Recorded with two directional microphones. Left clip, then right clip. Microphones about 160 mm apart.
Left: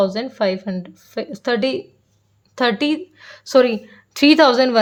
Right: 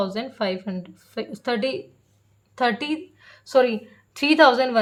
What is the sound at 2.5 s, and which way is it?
A woman's voice, 55° left (ahead or behind).